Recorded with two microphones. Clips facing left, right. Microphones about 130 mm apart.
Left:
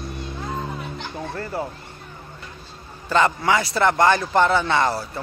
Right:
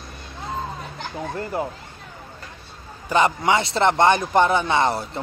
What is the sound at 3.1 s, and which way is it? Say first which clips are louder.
Speech: even; 20° right (ahead or behind).